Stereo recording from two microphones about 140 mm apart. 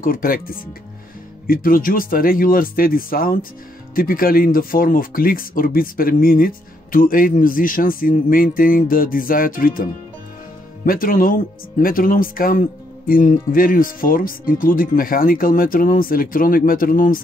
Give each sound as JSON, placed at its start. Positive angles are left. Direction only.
{"t": 0.0, "sound": "speech", "side_deg": 90}
{"t": 10.9, "sound": "speech", "side_deg": 90}